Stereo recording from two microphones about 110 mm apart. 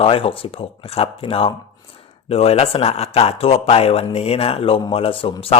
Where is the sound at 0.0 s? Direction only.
60° left (ahead or behind).